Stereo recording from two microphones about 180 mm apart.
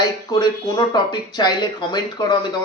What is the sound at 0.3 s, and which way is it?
A man's voice, 25° left (ahead or behind).